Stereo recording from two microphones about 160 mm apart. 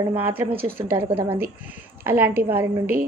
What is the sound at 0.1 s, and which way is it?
Speech, 10° right (ahead or behind).